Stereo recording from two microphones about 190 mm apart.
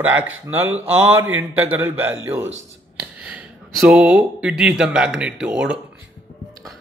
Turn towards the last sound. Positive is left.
turn(degrees=-5)  # may be behind; listen again after turning